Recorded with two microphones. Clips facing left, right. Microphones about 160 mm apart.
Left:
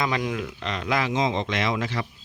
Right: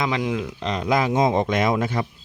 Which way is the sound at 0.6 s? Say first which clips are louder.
Right 5 dB; 35° right (ahead or behind).